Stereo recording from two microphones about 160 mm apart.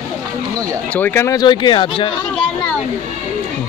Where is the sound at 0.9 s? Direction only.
15° left (ahead or behind); by 2.1 s 30° left (ahead or behind).